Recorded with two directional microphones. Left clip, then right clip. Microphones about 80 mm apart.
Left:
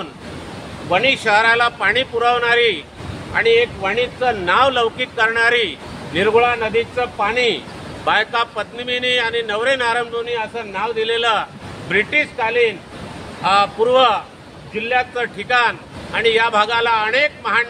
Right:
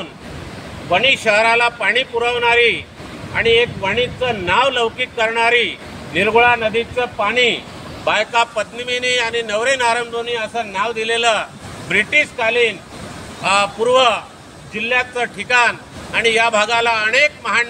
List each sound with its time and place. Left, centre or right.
0.8 s a man's voice: left